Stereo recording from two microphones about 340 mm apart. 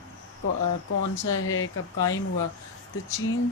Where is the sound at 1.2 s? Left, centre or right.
Left.